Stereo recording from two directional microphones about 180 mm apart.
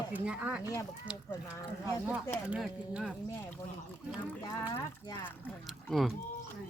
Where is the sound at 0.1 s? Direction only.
10° right (ahead or behind).